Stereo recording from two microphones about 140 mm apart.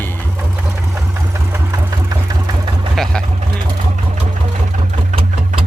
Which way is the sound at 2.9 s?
5° left (ahead or behind).